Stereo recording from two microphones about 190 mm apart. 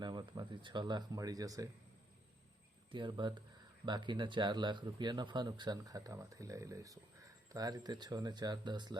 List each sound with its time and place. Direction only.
0.0 s speech: 25° right (ahead or behind)
2.9 s speech: 25° right (ahead or behind)